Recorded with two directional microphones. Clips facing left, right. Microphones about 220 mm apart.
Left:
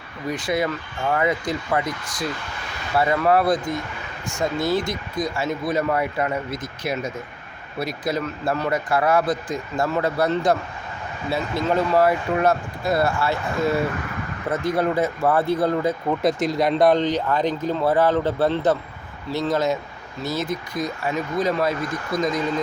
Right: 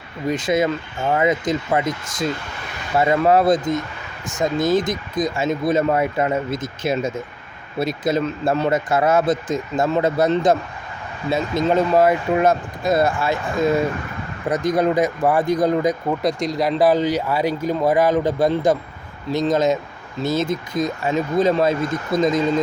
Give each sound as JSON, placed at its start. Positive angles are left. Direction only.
{"t": 0.3, "sound": "speech", "side_deg": -20}
{"t": 16.2, "sound": "speech", "side_deg": 0}